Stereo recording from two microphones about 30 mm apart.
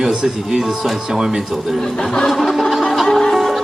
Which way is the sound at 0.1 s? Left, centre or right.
Right.